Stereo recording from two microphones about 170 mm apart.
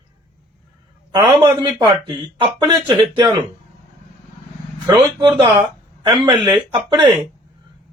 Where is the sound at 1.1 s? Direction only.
25° right (ahead or behind).